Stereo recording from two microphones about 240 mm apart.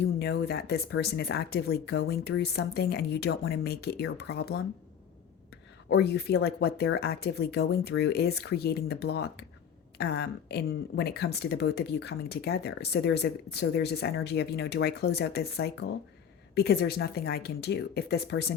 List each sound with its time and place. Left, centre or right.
0.2 s speech: left
5.9 s speech: left